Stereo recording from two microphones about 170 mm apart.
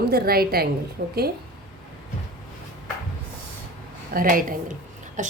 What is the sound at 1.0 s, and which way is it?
Speech, 50° right (ahead or behind).